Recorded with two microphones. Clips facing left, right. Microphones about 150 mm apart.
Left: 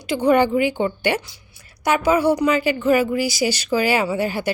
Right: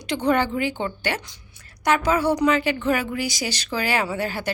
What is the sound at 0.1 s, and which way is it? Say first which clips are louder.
A woman's voice: left 5 dB; 10° left (ahead or behind).